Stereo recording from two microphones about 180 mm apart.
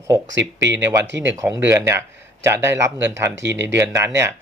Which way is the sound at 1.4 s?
15° right (ahead or behind).